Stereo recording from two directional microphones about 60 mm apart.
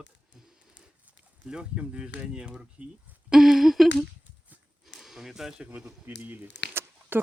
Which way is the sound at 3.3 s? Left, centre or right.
Centre.